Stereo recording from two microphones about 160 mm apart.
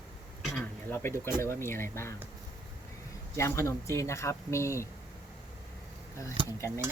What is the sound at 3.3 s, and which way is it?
Speech, 15° left (ahead or behind).